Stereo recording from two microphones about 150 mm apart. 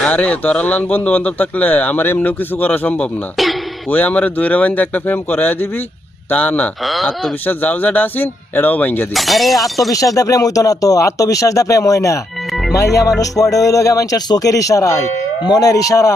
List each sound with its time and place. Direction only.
0.0 s speech: 10° left (ahead or behind)
7.4 s speech: 10° left (ahead or behind)
9.1 s speech: centre (ahead or behind)
10.2 s speech: 25° left (ahead or behind)